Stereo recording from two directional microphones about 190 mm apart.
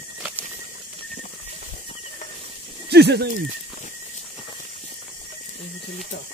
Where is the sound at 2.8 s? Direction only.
60° right (ahead or behind).